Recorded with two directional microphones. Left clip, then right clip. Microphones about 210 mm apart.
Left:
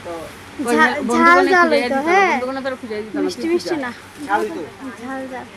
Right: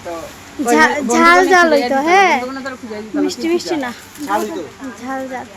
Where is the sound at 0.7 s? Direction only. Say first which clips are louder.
Right 3 dB; 15° right (ahead or behind).